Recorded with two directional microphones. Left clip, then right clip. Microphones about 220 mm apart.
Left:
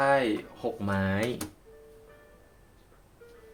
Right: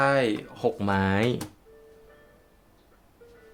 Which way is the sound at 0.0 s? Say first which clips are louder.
Right 2 dB; 45° right (ahead or behind).